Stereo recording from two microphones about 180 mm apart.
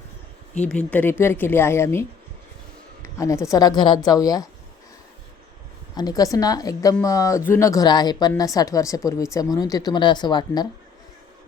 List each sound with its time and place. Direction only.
0.7 s a woman's voice: 5° left (ahead or behind)
5.9 s a woman's voice: 20° left (ahead or behind)